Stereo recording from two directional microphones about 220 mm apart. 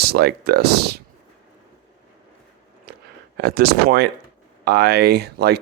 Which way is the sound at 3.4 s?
45° right (ahead or behind).